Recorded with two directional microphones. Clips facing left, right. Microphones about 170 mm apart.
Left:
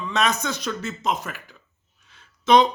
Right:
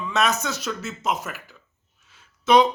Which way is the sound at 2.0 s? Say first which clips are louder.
Left 1 dB; 5° right (ahead or behind).